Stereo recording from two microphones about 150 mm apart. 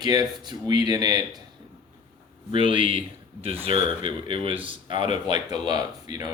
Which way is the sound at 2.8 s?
40° right (ahead or behind).